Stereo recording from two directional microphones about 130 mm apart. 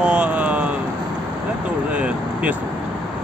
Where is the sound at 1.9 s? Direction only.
10° right (ahead or behind).